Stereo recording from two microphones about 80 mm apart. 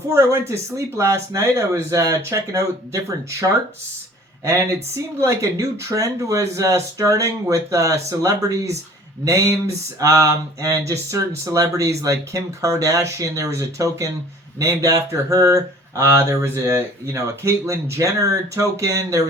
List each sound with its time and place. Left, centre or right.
0.1 s speech: right
5.2 s speech: right